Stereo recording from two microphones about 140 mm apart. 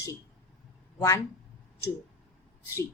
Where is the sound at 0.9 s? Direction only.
20° left (ahead or behind).